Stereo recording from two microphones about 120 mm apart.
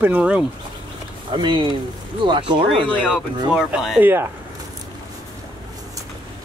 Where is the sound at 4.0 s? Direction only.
20° right (ahead or behind).